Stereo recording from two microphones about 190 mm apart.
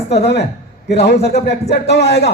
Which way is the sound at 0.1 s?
60° left (ahead or behind).